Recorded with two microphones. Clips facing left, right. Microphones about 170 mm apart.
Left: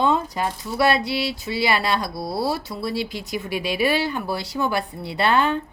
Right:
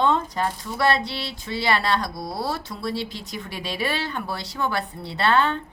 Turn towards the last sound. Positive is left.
turn(degrees=10)  # may be behind; listen again after turning